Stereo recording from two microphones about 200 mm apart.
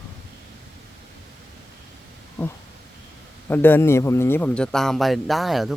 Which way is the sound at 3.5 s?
10° left (ahead or behind).